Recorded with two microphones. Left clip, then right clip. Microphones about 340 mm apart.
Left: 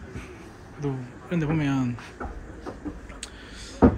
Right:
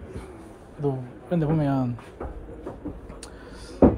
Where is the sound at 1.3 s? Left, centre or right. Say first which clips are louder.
Right 2 dB; centre.